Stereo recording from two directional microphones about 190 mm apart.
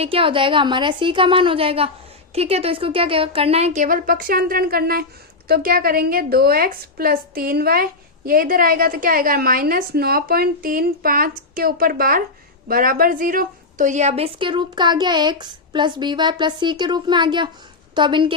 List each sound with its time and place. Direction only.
0.0 s a woman's voice: 30° right (ahead or behind)